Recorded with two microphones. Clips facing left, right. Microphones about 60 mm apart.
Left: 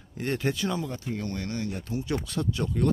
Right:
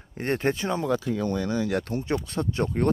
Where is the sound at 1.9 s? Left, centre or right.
Right.